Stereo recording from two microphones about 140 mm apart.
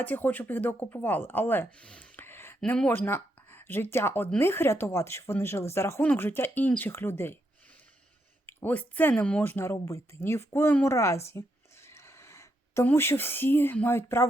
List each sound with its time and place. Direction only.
0.0 s speech: 15° left (ahead or behind)
8.4 s speech: 10° left (ahead or behind)